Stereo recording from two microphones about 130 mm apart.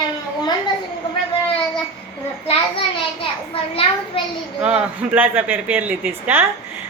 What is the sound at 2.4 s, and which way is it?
A child's voice, 45° left (ahead or behind).